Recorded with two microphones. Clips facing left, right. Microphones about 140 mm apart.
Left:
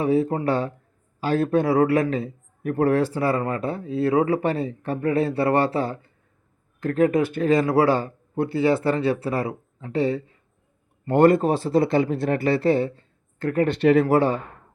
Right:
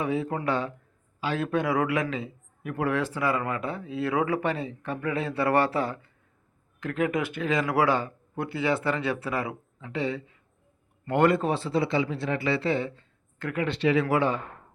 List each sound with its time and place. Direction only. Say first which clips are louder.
0.0 s a man's voice: left 7 dB; 35° left (ahead or behind)